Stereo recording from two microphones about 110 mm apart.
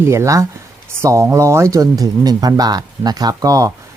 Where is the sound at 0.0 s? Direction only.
25° right (ahead or behind).